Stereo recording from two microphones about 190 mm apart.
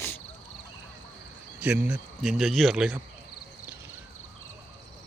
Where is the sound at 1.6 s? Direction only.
5° right (ahead or behind).